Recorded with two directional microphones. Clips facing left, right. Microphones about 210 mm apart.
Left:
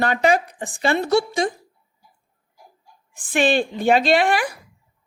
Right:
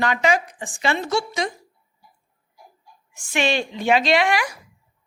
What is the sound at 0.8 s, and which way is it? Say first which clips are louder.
Speech: left 3 dB; 50° left (ahead or behind).